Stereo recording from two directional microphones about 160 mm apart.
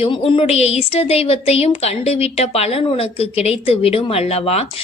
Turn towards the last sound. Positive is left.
turn(degrees=40)  # may be behind; listen again after turning